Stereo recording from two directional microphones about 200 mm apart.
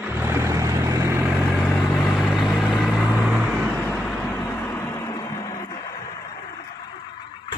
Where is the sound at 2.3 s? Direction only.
Centre (ahead or behind).